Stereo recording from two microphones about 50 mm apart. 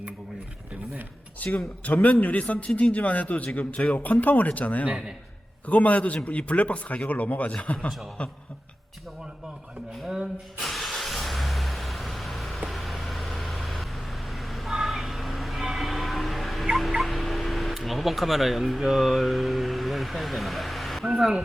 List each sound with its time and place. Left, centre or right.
1.4 s a man's voice: left
10.6 s vehicle: centre
17.0 s a sound: centre